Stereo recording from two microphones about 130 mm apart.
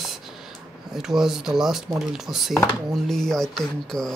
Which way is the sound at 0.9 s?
5° right (ahead or behind).